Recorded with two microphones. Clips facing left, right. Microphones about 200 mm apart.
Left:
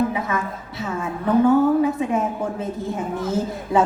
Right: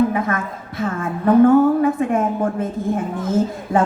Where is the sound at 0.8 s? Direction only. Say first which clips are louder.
Right 4 dB; 55° right (ahead or behind).